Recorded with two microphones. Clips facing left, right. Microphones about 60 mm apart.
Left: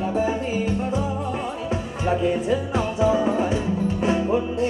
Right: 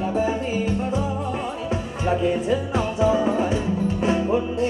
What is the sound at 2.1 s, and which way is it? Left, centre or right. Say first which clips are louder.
Music: even; centre.